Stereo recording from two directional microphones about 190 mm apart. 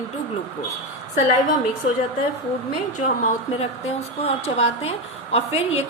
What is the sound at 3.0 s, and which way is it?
A woman's voice, 35° left (ahead or behind).